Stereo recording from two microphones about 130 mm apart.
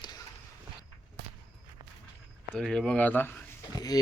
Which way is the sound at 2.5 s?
5° left (ahead or behind).